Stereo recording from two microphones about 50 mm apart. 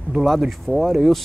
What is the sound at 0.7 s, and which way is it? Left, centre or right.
Speech, left.